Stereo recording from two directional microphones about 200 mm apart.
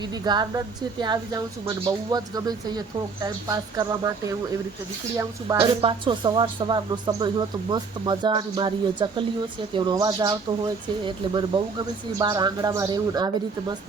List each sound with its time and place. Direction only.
0.0 s a woman's voice: 20° right (ahead or behind)
5.5 s a woman's voice: 25° right (ahead or behind)